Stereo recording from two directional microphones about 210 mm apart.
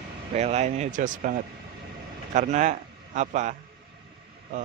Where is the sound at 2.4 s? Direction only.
35° right (ahead or behind).